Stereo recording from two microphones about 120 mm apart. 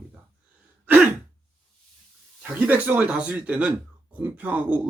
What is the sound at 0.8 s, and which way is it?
Sigh, 15° right (ahead or behind).